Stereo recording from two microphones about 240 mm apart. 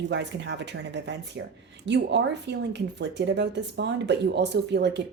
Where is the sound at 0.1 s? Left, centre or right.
Right.